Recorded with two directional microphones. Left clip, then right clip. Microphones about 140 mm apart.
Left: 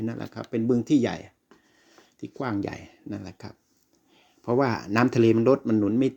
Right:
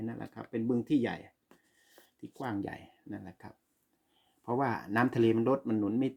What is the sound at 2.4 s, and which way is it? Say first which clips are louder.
Speech: left 7 dB; 35° left (ahead or behind).